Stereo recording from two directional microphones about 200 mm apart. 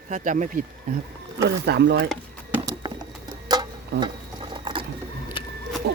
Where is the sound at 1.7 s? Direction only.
55° right (ahead or behind).